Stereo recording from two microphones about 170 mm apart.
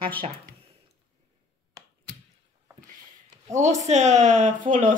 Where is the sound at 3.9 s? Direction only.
45° right (ahead or behind).